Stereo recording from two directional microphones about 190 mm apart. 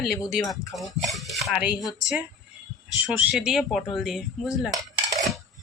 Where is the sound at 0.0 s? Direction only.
Centre (ahead or behind).